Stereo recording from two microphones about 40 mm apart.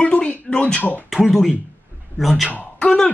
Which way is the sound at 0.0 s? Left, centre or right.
Left.